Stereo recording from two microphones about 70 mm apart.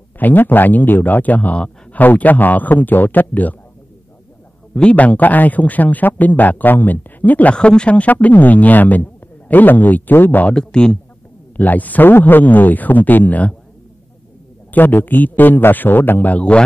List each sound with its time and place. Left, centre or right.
0.2 s a man's voice: left
4.7 s a man's voice: centre
10.5 s speech: centre
11.5 s a man's voice: left
14.7 s a man's voice: left